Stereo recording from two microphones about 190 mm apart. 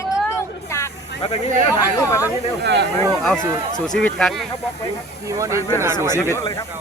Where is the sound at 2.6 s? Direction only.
65° right (ahead or behind).